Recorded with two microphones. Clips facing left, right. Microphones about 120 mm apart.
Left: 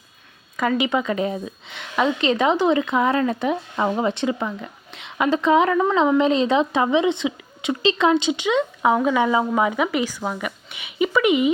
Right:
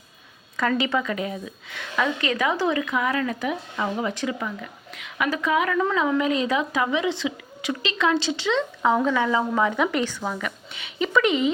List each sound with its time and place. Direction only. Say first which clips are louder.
0.5 s a woman's voice: left 2 dB; 10° left (ahead or behind)